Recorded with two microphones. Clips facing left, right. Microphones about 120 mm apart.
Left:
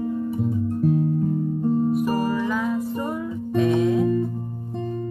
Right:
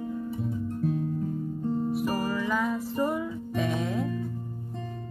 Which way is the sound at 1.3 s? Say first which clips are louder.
Left 8 dB; 45° left (ahead or behind).